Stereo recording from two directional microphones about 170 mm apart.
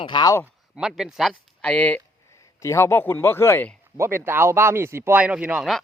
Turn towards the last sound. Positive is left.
turn(degrees=-5)  # may be behind; listen again after turning